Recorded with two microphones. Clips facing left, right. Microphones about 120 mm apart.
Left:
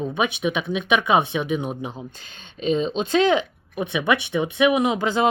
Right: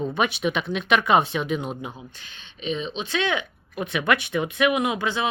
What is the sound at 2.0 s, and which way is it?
Speech, 40° left (ahead or behind).